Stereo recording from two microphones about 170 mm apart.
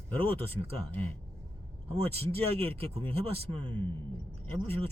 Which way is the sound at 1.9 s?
35° right (ahead or behind).